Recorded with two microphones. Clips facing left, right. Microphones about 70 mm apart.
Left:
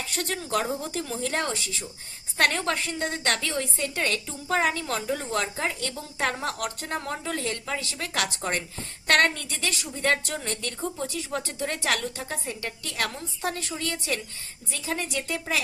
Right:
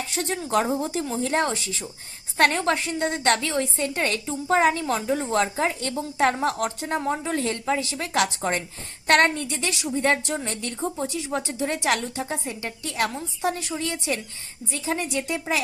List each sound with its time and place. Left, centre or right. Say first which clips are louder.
0.1 s a woman's voice: right 3 dB; right
6.7 s a woman's voice: right 5 dB; centre